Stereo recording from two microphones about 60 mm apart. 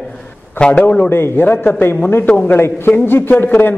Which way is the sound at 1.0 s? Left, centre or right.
Left.